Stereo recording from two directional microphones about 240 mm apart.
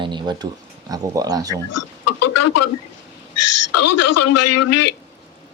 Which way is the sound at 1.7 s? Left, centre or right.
Left.